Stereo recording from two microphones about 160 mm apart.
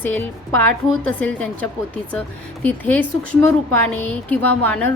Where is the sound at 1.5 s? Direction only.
10° left (ahead or behind).